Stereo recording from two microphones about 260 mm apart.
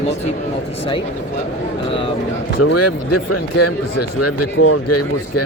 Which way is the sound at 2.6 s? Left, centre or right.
Left.